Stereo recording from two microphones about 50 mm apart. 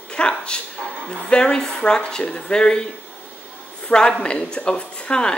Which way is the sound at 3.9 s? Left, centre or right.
Left.